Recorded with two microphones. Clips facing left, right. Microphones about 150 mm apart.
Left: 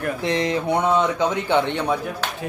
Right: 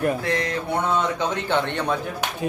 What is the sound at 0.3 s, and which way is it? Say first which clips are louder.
Speech: left 3 dB; 20° left (ahead or behind).